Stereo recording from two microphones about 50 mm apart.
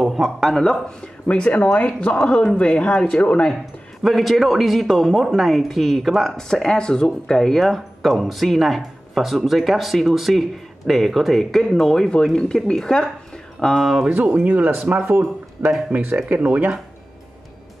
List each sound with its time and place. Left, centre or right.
0.0 s speech: centre
0.6 s speech: centre
4.0 s speech: centre
6.3 s speech: centre
13.7 s speech: centre
14.0 s speech: right
16.3 s speech: right